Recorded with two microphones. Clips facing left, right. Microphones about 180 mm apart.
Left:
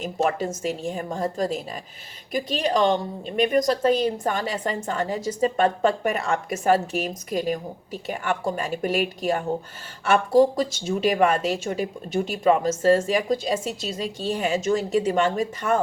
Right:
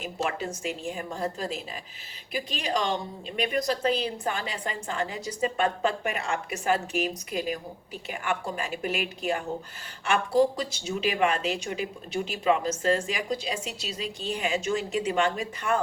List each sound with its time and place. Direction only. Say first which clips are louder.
0.2 s a woman's voice: left 7 dB; 40° left (ahead or behind)
10.6 s a woman's voice: left 6 dB; 45° left (ahead or behind)